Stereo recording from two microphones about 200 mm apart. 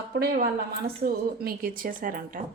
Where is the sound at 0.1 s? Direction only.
50° right (ahead or behind).